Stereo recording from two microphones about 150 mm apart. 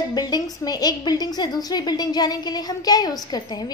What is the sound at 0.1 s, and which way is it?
A woman's voice, 25° left (ahead or behind).